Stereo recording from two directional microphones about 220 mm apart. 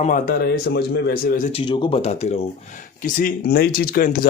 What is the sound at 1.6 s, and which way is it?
A man's voice, 20° left (ahead or behind).